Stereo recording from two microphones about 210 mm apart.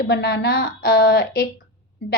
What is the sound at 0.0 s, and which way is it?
A woman's voice, 50° left (ahead or behind).